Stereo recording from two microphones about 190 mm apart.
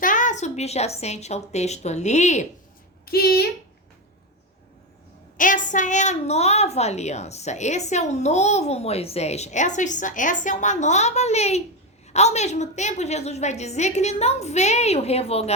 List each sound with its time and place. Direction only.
0.0 s a woman's voice: 40° left (ahead or behind)
3.1 s speech: 55° left (ahead or behind)
5.4 s a woman's voice: 45° left (ahead or behind)